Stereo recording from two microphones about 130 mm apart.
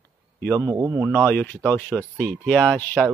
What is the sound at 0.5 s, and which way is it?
Speech, 25° right (ahead or behind).